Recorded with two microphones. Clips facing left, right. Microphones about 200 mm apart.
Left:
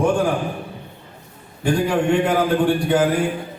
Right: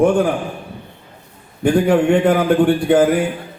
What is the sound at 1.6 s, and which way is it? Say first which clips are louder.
A man's voice: right 5 dB; 55° right (ahead or behind).